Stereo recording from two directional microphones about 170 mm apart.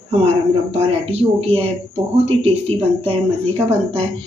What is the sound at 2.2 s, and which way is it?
Speech, 35° right (ahead or behind).